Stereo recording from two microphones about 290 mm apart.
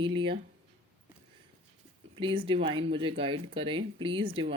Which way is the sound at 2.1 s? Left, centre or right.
Centre.